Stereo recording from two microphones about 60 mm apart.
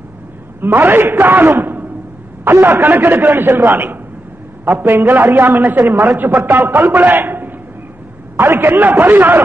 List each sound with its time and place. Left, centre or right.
0.6 s a man's voice: right